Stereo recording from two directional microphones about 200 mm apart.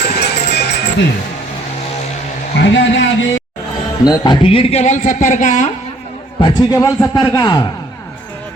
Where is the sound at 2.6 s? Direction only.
65° left (ahead or behind).